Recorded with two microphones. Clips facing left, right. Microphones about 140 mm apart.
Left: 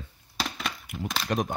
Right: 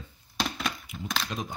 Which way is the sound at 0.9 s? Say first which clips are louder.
Left 4 dB; 70° left (ahead or behind).